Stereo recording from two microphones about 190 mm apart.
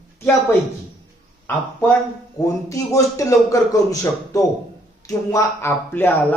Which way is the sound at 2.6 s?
15° left (ahead or behind).